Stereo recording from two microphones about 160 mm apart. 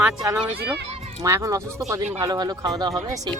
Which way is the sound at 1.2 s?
20° right (ahead or behind).